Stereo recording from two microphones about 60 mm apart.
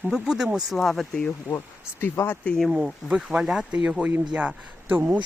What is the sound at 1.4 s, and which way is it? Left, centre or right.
Speech, left.